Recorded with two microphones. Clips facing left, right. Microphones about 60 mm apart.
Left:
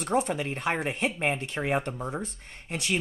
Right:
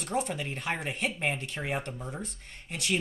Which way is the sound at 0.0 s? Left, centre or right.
Left.